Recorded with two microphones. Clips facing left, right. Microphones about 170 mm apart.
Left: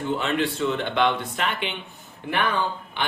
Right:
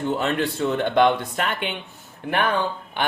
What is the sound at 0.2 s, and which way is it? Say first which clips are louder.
Speech: right 1 dB; 45° right (ahead or behind).